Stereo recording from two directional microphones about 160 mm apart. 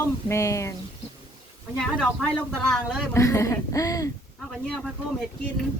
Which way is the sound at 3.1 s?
20° left (ahead or behind).